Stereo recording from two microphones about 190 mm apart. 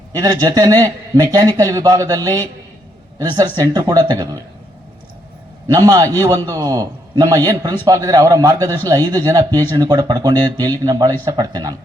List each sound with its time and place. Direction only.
0.1 s a man's voice: 20° right (ahead or behind)
5.6 s a man's voice: 20° right (ahead or behind)